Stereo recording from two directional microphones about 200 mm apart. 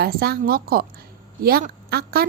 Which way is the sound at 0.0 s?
50° right (ahead or behind).